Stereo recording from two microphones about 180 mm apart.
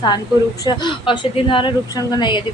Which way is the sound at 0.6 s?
25° left (ahead or behind).